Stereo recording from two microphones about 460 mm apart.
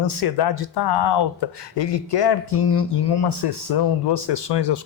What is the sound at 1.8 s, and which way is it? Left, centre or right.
Speech, left.